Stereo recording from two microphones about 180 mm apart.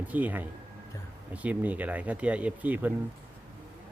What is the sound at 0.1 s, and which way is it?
A man's voice, 10° right (ahead or behind).